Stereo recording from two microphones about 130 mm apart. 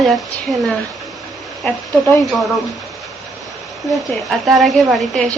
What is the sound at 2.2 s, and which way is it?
Speech, centre (ahead or behind).